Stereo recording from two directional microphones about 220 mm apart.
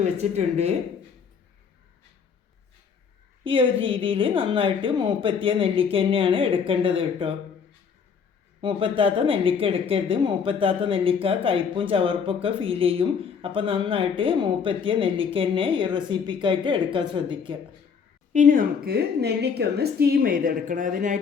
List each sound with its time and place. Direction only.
0.0 s speech: 30° right (ahead or behind)
3.4 s speech: 25° right (ahead or behind)
8.6 s speech: 25° right (ahead or behind)
18.3 s a woman's voice: 40° right (ahead or behind)